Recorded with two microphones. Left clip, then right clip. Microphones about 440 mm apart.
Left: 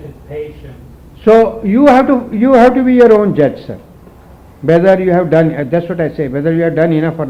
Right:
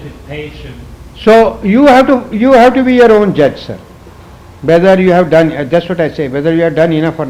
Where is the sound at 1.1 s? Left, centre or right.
Right.